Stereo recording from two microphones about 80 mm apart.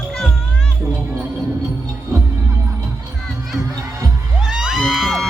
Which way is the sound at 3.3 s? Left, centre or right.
Centre.